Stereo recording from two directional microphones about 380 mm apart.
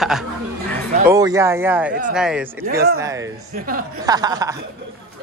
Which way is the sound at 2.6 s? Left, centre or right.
Right.